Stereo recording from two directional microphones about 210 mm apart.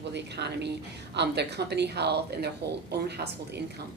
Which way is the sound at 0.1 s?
55° right (ahead or behind).